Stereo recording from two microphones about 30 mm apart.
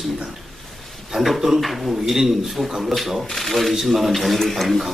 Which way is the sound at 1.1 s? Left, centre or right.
Right.